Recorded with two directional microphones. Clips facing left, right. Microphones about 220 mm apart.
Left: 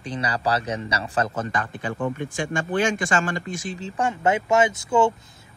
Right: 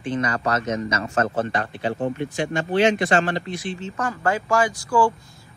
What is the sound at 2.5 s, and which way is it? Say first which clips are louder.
Speech: right 4 dB; 50° left (ahead or behind).